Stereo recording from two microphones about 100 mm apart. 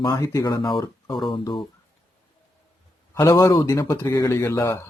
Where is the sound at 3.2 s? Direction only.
35° left (ahead or behind).